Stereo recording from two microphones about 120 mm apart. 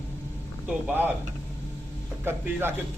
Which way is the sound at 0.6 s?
15° right (ahead or behind).